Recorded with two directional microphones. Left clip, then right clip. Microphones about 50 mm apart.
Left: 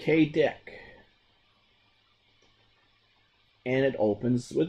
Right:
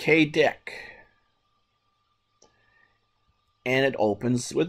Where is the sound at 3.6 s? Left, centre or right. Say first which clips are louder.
Right 3 dB; right.